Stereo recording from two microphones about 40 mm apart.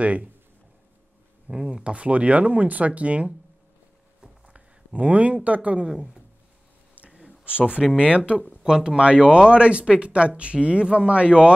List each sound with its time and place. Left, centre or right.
0.0 s speech: right
1.5 s speech: centre; by 3.3 s right
4.5 s speech: right
5.9 s speech: centre
7.0 s a sound: right
7.4 s speech: right